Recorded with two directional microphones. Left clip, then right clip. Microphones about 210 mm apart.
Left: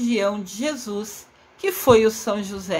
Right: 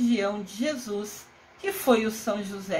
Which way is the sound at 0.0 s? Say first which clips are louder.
Left 4 dB; 35° left (ahead or behind).